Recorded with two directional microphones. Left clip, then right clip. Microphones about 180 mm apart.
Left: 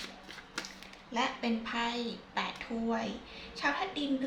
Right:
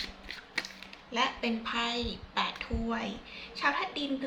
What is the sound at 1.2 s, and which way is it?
A woman's voice, 10° left (ahead or behind).